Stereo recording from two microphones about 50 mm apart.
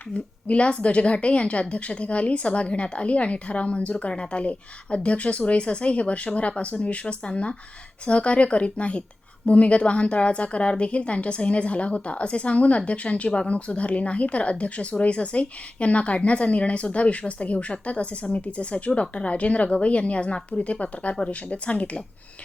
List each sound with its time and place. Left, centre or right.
0.4 s a woman's voice: left